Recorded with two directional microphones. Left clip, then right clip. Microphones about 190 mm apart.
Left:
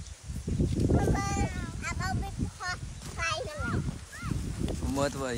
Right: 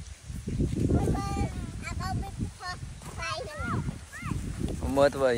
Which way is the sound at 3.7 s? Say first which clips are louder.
Right 2 dB; 35° right (ahead or behind).